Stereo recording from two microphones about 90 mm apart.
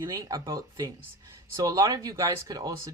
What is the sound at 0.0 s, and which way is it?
Speech, 45° right (ahead or behind).